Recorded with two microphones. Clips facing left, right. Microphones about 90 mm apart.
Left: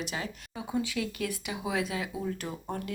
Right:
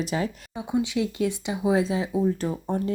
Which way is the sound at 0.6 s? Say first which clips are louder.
Right 6 dB; 20° right (ahead or behind).